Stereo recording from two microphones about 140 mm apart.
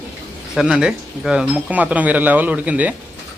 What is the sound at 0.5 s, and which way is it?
Speech, 5° right (ahead or behind).